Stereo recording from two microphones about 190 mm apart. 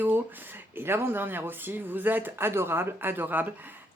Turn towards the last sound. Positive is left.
turn(degrees=-10)  # may be behind; listen again after turning